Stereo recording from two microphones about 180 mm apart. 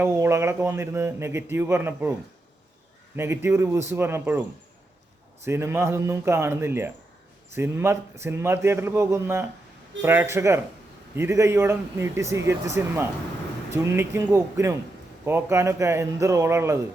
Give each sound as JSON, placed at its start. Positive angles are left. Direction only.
{"t": 0.0, "sound": "a man's voice", "side_deg": -15}
{"t": 3.2, "sound": "a man's voice", "side_deg": -15}
{"t": 5.5, "sound": "a man's voice", "side_deg": -15}